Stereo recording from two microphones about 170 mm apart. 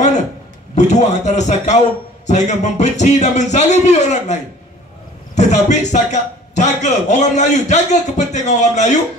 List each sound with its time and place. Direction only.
0.7 s a man's voice: 45° left (ahead or behind)